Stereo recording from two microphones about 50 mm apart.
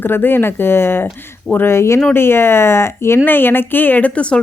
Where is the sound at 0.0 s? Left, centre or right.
Left.